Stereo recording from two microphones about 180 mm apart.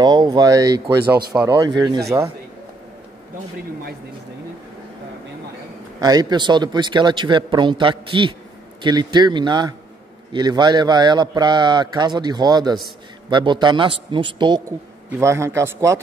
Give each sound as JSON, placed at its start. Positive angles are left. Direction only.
{"t": 0.0, "sound": "a man's voice", "side_deg": -25}
{"t": 5.9, "sound": "a man's voice", "side_deg": -20}
{"t": 15.0, "sound": "a man's voice", "side_deg": -15}